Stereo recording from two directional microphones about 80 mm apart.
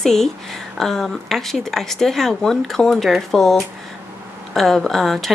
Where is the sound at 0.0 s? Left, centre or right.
Centre.